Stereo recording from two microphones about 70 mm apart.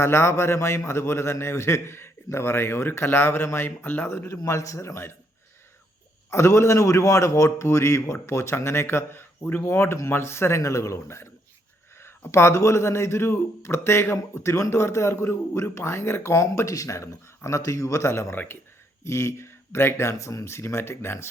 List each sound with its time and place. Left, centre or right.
0.0 s speech: left
4.4 s a man's voice: left
6.3 s speech: left